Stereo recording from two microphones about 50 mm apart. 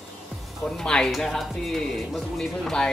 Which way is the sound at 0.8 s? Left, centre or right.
Centre.